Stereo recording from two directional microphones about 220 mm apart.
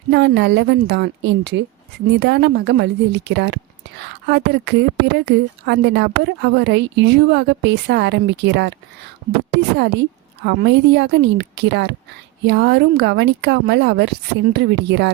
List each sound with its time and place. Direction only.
0.1 s speech: 50° right (ahead or behind)
9.7 s speech: 50° right (ahead or behind)